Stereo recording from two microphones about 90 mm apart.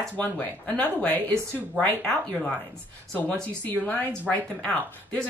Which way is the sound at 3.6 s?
15° left (ahead or behind).